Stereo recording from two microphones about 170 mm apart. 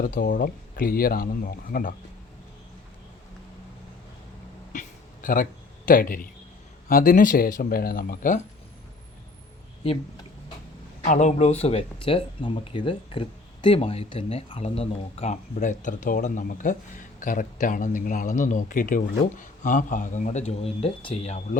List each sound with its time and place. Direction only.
0.0 s speech: 55° left (ahead or behind)
4.7 s a sound: 50° left (ahead or behind)
6.8 s speech: 55° left (ahead or behind)
11.0 s speech: 45° left (ahead or behind)